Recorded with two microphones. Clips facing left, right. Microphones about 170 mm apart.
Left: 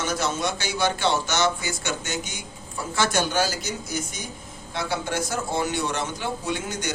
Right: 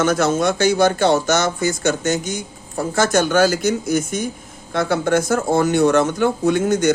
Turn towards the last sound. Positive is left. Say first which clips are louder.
# right 13 dB
turn(degrees=-50)  # may be behind; listen again after turning